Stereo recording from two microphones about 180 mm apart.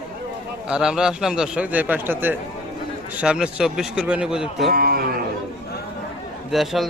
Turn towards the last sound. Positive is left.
turn(degrees=0)  # may be behind; listen again after turning